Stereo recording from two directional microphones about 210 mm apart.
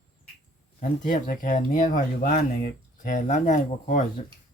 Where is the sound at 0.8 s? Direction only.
40° left (ahead or behind).